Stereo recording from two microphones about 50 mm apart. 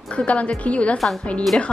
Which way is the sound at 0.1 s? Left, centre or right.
Left.